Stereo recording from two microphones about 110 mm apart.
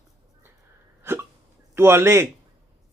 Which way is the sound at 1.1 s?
20° right (ahead or behind).